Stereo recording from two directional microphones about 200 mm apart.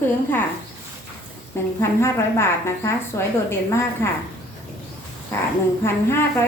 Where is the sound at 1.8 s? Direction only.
10° left (ahead or behind).